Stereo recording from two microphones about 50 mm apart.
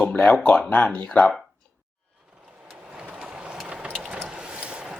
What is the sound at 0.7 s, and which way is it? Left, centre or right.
Speech, left.